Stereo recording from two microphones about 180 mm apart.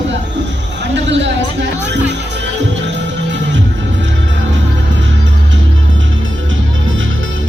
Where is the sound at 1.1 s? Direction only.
80° right.